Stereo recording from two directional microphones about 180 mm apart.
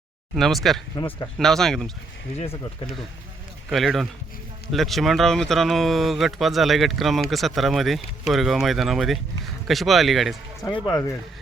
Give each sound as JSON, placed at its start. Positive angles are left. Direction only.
{"t": 0.3, "sound": "speech", "side_deg": 0}
{"t": 0.9, "sound": "speech", "side_deg": 20}
{"t": 1.4, "sound": "speech", "side_deg": 0}
{"t": 2.3, "sound": "speech", "side_deg": 35}
{"t": 3.7, "sound": "speech", "side_deg": 0}
{"t": 10.7, "sound": "speech", "side_deg": 20}